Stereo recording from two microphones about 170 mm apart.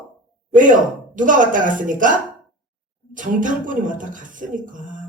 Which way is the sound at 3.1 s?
50° right (ahead or behind).